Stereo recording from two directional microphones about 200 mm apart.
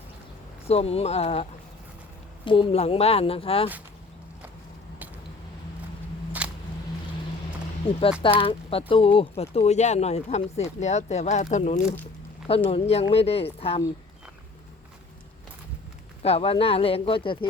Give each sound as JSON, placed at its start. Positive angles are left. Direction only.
{"t": 0.7, "sound": "speech", "side_deg": 30}
{"t": 6.4, "sound": "a sound", "side_deg": -5}
{"t": 8.2, "sound": "speech", "side_deg": 25}
{"t": 16.2, "sound": "speech", "side_deg": 30}